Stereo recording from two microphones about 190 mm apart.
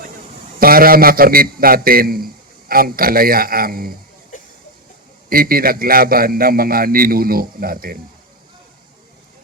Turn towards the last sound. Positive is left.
turn(degrees=-50)  # may be behind; listen again after turning